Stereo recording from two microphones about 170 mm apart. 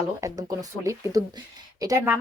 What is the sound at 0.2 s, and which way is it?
Speech, 20° right (ahead or behind).